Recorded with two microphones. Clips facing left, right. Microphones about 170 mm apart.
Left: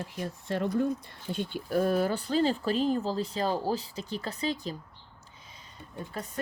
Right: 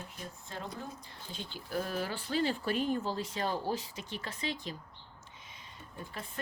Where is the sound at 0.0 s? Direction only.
70° left (ahead or behind); by 4.7 s 40° left (ahead or behind).